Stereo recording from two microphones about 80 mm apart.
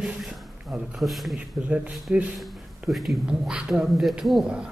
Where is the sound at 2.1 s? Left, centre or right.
Centre.